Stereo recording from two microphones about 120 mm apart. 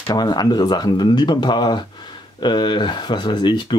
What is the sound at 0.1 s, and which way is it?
Speech, 35° left (ahead or behind).